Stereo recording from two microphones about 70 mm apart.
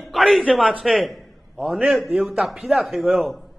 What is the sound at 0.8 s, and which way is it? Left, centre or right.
A man's voice, centre.